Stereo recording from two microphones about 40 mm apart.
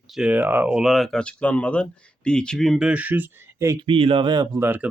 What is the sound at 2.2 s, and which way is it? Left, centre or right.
Speech, left.